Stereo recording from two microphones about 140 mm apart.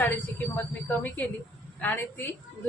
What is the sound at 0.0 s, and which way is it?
A woman's voice, 15° left (ahead or behind).